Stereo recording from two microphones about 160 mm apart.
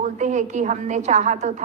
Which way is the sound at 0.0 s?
50° right (ahead or behind).